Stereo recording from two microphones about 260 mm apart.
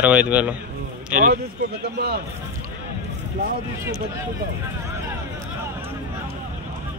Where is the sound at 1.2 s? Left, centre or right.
Right.